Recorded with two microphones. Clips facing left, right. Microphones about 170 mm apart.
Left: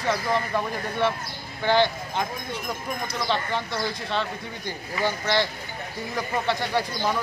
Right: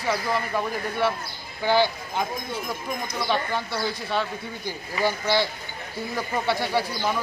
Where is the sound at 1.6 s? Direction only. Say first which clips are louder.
Even; 10° right (ahead or behind).